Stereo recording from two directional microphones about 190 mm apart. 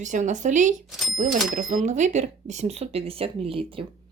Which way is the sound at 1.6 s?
40° right (ahead or behind).